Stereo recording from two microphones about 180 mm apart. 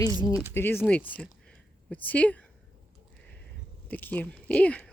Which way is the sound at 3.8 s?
10° left (ahead or behind).